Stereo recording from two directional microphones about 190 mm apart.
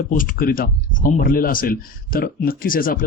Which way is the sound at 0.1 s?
45° left (ahead or behind).